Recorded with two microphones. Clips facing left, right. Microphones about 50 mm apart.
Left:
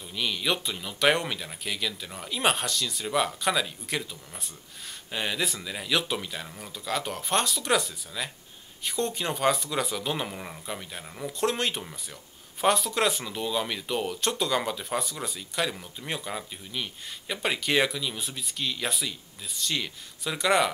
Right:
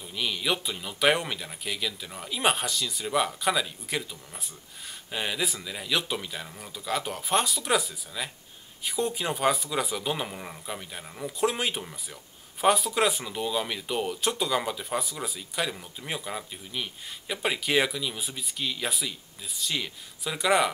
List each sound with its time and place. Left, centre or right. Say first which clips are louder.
0.0 s speech: even; centre